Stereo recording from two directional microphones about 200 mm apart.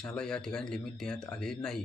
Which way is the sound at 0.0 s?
5° left (ahead or behind).